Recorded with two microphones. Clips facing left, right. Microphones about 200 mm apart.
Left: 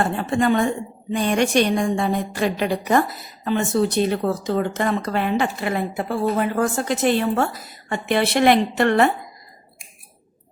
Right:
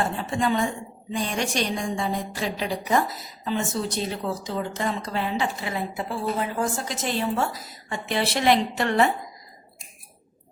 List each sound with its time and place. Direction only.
0.0 s a woman's voice: 60° left (ahead or behind)